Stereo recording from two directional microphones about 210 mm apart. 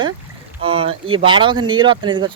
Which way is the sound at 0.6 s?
25° right (ahead or behind).